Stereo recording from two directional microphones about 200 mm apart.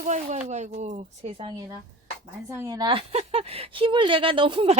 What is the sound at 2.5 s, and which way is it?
A woman's voice, 15° right (ahead or behind).